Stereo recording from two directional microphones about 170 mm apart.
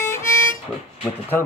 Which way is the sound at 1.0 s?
10° left (ahead or behind).